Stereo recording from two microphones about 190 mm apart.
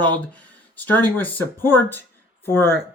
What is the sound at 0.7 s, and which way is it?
Speech, 10° left (ahead or behind).